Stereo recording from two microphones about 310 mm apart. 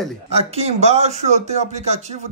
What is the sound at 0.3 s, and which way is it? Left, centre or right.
Speech, centre.